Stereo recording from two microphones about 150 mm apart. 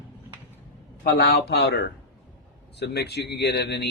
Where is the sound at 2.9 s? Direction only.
90° left.